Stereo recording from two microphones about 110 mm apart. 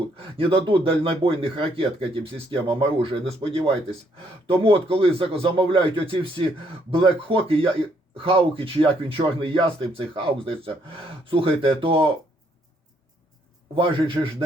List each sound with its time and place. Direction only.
0.3 s speech: 50° right (ahead or behind)
4.6 s speech: 55° right (ahead or behind)
13.7 s a man's voice: 50° right (ahead or behind)